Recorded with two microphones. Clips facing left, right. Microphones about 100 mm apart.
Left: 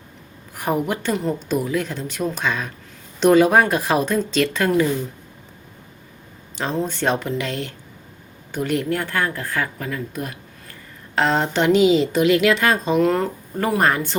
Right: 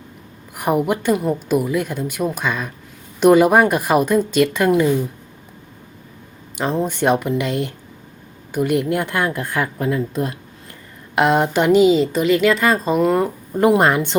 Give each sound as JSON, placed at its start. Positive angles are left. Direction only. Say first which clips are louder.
{"t": 0.5, "sound": "a woman's voice", "louder": "right 4 dB", "side_deg": -10}
{"t": 6.6, "sound": "a woman's voice", "louder": "right 4 dB", "side_deg": -15}
{"t": 11.1, "sound": "a woman's voice", "louder": "right 4 dB", "side_deg": -15}